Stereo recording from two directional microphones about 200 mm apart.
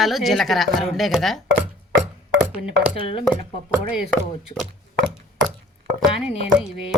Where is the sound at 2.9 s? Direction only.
30° left (ahead or behind).